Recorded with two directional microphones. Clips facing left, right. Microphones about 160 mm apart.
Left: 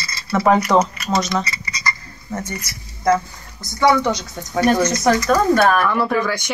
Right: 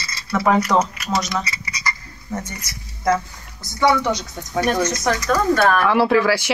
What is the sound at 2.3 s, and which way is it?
Speech, 10° right (ahead or behind).